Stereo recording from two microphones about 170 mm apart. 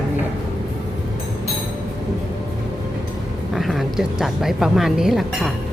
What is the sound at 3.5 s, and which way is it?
Speech, centre (ahead or behind).